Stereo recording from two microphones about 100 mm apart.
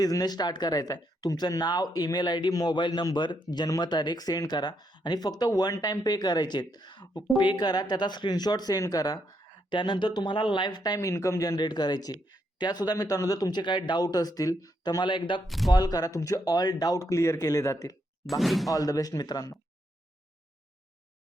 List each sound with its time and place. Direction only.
0.0 s speech: 40° left (ahead or behind)
2.7 s speech: 50° left (ahead or behind)
9.6 s speech: 55° left (ahead or behind); by 15.0 s 40° left (ahead or behind)
15.0 s speech: 55° left (ahead or behind)
15.4 s speech: centre (ahead or behind)
15.7 s speech: 40° left (ahead or behind)
18.3 s speech: centre (ahead or behind)
18.7 s speech: 35° left (ahead or behind)